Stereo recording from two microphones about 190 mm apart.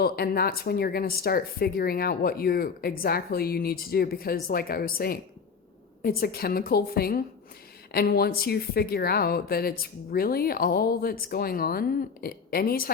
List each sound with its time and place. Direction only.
0.0 s speech: 55° left (ahead or behind)